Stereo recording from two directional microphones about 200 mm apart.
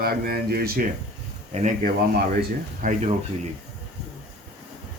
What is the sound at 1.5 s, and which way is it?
Speech, 40° right (ahead or behind).